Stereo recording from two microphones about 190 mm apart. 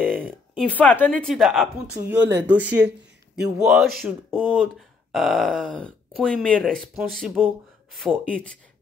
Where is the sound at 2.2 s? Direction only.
70° right (ahead or behind).